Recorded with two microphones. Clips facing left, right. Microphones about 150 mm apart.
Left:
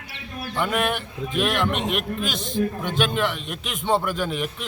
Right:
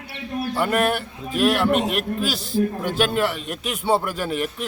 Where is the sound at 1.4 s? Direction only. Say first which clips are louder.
Right 5 dB; 10° right (ahead or behind).